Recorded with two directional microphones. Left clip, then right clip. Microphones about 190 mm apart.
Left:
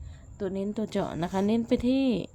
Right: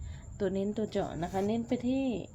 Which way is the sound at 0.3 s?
5° left (ahead or behind).